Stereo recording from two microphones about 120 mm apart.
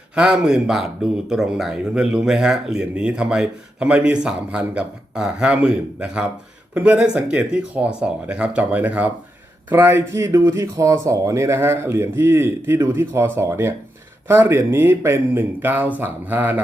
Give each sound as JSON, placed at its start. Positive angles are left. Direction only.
{"t": 0.2, "sound": "speech", "side_deg": -5}